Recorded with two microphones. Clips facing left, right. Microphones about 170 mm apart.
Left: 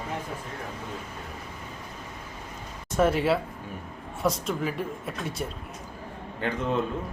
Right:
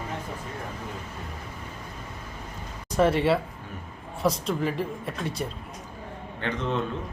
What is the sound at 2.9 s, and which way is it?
Speech, centre (ahead or behind).